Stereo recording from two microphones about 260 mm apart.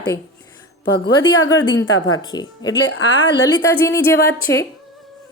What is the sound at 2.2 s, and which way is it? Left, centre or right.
A woman's voice, centre.